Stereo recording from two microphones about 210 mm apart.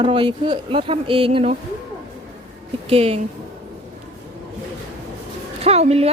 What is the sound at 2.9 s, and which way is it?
Speech, 30° right (ahead or behind).